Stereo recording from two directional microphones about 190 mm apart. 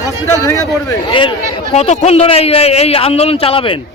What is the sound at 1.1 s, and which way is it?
A man's voice, 25° left (ahead or behind).